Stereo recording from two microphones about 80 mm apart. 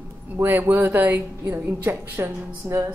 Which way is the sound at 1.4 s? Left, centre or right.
Right.